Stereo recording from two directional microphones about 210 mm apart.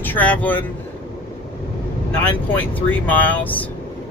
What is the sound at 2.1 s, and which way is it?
Speech, 10° left (ahead or behind).